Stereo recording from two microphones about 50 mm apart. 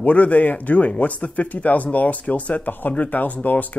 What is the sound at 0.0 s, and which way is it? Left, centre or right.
Speech, left.